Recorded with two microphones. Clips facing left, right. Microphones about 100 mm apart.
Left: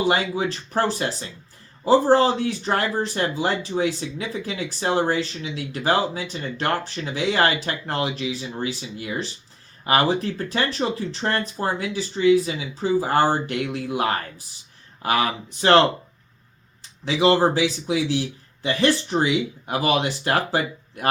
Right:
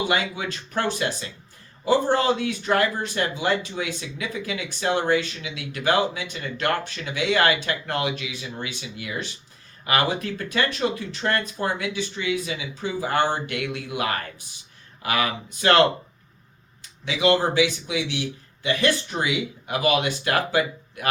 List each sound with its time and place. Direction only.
0.1 s speech: 35° left (ahead or behind)
17.1 s speech: 35° left (ahead or behind)